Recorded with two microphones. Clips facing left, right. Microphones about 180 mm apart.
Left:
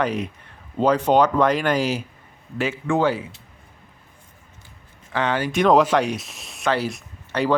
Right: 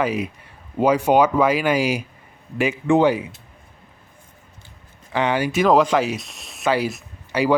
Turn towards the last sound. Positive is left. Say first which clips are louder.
# right 2 dB
turn(degrees=-10)  # may be behind; listen again after turning